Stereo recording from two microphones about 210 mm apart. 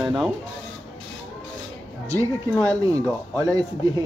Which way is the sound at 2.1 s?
15° right (ahead or behind).